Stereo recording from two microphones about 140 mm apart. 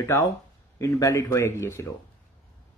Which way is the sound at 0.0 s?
20° left (ahead or behind).